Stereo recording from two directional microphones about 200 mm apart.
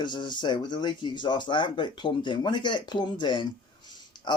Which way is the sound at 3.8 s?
20° left (ahead or behind).